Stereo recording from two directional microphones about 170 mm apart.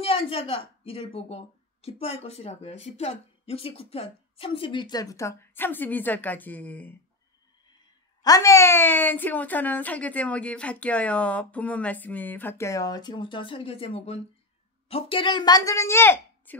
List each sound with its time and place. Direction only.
0.0 s speech: 35° left (ahead or behind); by 7.0 s 10° left (ahead or behind)
8.2 s a woman's voice: 20° left (ahead or behind)